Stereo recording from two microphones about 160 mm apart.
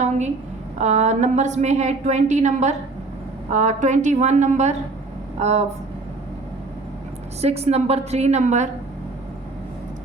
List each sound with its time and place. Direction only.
0.8 s a woman's voice: 45° right (ahead or behind)
7.4 s a woman's voice: 40° right (ahead or behind)